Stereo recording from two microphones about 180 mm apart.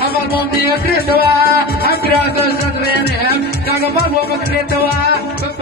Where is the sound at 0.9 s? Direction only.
60° left (ahead or behind).